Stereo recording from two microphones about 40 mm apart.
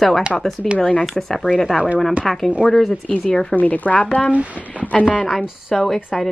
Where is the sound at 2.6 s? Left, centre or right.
Centre.